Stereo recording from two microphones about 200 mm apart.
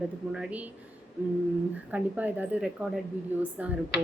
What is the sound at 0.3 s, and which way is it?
Speech, 5° right (ahead or behind).